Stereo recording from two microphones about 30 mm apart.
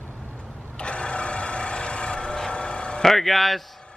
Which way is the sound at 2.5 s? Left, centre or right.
Left.